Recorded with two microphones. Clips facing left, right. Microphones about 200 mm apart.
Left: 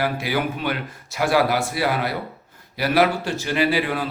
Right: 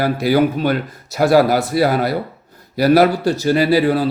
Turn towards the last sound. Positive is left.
turn(degrees=-35)  # may be behind; listen again after turning